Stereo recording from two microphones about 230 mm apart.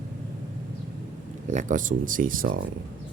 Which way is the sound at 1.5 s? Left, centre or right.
Right.